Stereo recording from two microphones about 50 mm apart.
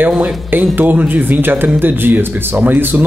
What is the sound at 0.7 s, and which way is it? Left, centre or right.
Speech, right.